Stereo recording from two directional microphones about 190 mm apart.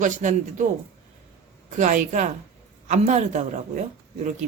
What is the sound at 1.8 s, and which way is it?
A woman's voice, 40° right (ahead or behind).